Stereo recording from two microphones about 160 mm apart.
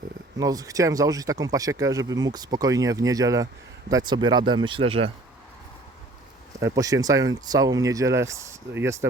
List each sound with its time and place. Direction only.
0.3 s speech: 20° right (ahead or behind)
6.6 s speech: 20° right (ahead or behind)